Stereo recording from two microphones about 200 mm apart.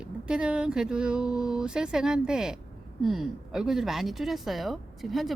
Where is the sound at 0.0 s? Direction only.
5° right (ahead or behind).